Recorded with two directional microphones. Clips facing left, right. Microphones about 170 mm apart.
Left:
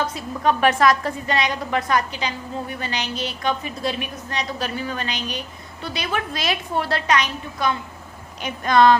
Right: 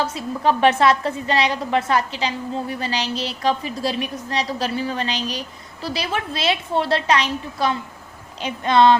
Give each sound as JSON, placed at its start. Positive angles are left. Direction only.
{"t": 0.0, "sound": "a woman's voice", "side_deg": -30}